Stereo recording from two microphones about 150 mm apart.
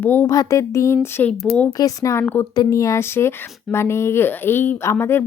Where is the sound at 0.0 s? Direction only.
15° left (ahead or behind).